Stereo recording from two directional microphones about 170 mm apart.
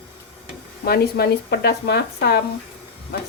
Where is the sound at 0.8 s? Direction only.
70° left (ahead or behind).